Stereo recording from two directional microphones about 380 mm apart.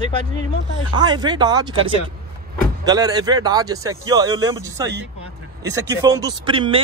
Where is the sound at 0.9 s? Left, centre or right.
Centre.